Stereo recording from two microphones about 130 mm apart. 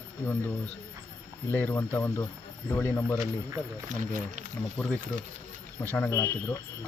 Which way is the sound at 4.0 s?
80° right.